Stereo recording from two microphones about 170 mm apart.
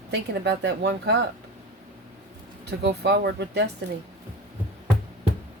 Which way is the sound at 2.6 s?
75° right (ahead or behind).